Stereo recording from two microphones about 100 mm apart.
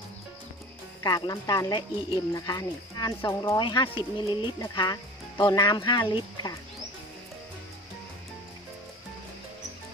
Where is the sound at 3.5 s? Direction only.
50° left (ahead or behind).